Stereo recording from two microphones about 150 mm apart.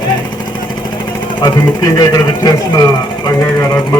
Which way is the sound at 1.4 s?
25° left (ahead or behind).